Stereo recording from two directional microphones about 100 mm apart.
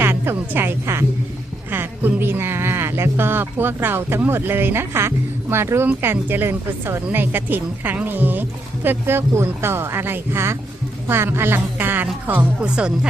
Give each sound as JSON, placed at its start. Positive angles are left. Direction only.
{"t": 0.0, "sound": "speech", "side_deg": -25}